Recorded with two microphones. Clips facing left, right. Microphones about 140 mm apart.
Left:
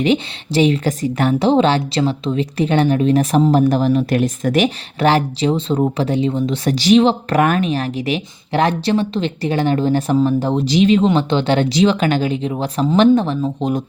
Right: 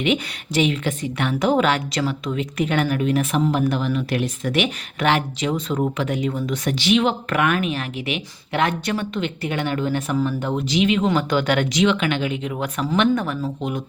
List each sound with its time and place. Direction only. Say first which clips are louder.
0.0 s a woman's voice: left 5 dB; 35° left (ahead or behind)